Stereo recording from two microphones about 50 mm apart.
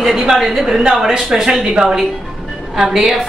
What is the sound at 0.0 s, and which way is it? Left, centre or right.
A woman's voice, centre.